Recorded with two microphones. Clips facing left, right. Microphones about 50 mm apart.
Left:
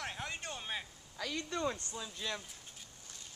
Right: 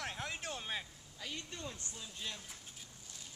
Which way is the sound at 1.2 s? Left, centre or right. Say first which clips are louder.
Left 9 dB; left.